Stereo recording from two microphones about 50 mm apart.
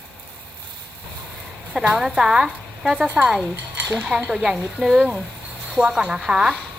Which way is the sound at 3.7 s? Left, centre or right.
Centre.